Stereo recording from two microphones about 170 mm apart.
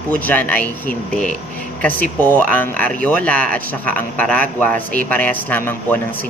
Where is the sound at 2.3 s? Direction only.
10° left (ahead or behind).